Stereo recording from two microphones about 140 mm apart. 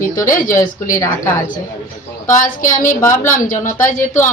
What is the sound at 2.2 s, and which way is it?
Speech, 70° left (ahead or behind).